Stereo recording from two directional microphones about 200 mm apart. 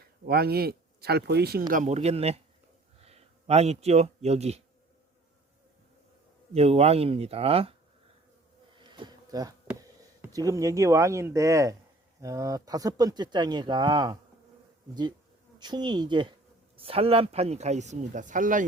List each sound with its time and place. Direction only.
0.3 s speech: 50° right (ahead or behind)
1.7 s a man's voice: 35° right (ahead or behind)
6.5 s speech: 30° right (ahead or behind)
8.8 s a sound: 20° right (ahead or behind)
12.2 s speech: 15° right (ahead or behind)
15.5 s speech: 20° right (ahead or behind); by 18.6 s 40° right (ahead or behind)